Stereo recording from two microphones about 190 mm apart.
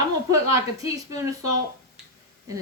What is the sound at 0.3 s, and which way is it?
Speech, 15° right (ahead or behind).